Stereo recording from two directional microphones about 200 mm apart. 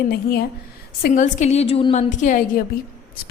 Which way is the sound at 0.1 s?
50° left (ahead or behind).